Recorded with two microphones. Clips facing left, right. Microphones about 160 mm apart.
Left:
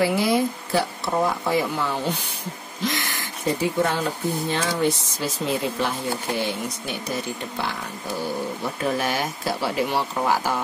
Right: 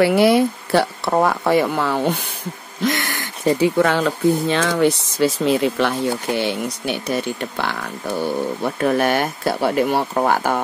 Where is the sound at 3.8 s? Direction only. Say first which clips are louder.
Right 6 dB; 90° right.